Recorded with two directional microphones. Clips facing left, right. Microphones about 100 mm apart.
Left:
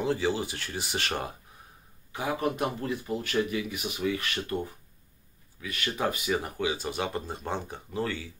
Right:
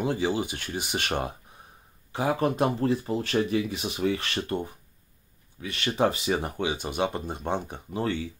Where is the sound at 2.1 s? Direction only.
35° right (ahead or behind).